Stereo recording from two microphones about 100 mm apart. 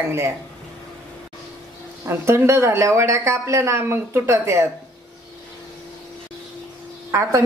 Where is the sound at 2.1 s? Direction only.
25° right (ahead or behind).